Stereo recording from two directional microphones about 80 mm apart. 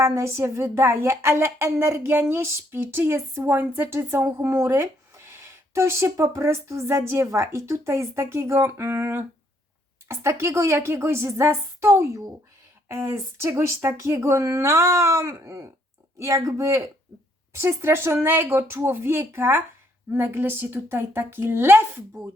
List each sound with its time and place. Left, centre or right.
0.0 s a woman's voice: right